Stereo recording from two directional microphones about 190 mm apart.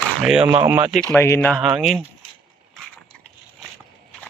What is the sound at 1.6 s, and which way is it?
Speech, 5° right (ahead or behind).